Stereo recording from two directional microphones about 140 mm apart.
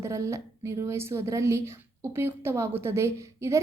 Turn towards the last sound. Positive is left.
turn(degrees=-20)  # may be behind; listen again after turning